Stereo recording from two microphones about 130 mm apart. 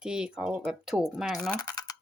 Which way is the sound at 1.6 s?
30° left (ahead or behind).